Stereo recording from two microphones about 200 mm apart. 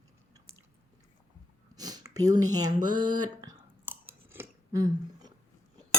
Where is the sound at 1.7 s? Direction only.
20° right (ahead or behind).